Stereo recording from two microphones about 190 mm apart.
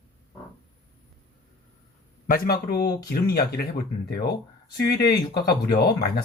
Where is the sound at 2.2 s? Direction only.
50° left (ahead or behind).